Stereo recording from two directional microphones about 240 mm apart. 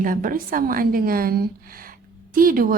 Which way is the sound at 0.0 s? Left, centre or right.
Right.